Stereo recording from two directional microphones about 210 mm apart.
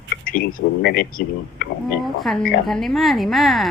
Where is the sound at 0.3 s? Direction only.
40° left (ahead or behind).